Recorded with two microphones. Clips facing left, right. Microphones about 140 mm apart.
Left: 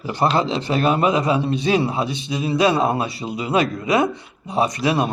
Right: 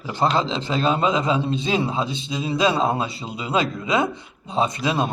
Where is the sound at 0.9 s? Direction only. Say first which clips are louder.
Left 2 dB; 20° right (ahead or behind).